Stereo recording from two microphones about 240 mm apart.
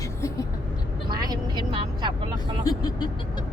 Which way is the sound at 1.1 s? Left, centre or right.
Centre.